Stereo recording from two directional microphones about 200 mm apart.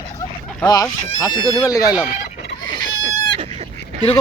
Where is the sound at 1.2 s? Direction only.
15° left (ahead or behind).